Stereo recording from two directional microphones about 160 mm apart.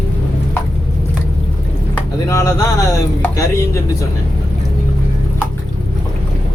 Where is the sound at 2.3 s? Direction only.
20° left (ahead or behind).